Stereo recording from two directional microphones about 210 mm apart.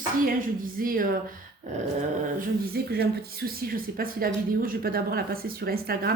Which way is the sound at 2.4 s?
45° right (ahead or behind).